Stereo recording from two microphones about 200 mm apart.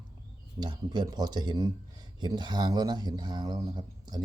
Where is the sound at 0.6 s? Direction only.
20° right (ahead or behind).